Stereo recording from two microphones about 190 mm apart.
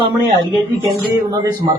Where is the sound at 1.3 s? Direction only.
20° right (ahead or behind).